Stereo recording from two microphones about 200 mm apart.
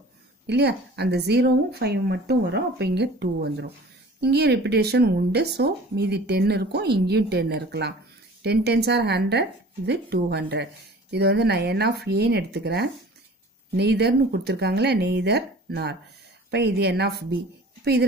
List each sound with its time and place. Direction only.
0.5 s speech: 55° right (ahead or behind)